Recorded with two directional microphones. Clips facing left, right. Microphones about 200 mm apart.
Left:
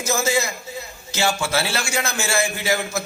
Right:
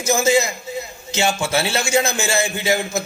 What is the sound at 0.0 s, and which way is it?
A man's voice, 20° right (ahead or behind).